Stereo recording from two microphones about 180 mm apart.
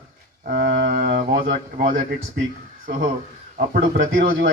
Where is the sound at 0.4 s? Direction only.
50° right (ahead or behind).